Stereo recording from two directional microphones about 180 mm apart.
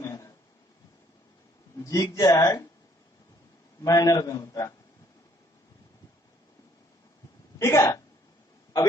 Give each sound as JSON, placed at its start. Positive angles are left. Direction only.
{"t": 0.0, "sound": "a sound", "side_deg": 20}
{"t": 1.8, "sound": "a man's voice", "side_deg": 20}
{"t": 3.8, "sound": "a man's voice", "side_deg": 20}
{"t": 7.6, "sound": "speech", "side_deg": 15}